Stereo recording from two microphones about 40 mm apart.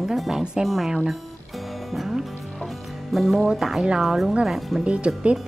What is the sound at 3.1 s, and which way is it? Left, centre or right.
Speech, centre.